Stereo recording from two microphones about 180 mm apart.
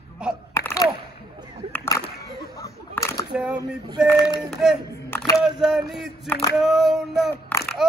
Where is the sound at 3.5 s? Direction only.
25° right (ahead or behind).